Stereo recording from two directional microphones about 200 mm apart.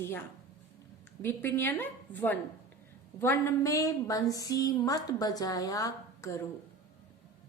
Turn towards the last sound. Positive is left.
turn(degrees=15)  # may be behind; listen again after turning